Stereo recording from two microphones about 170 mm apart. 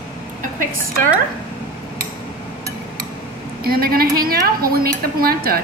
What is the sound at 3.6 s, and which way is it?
Speech, 60° right (ahead or behind).